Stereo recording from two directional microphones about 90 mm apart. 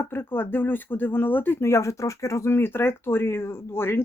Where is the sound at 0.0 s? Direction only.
25° left (ahead or behind).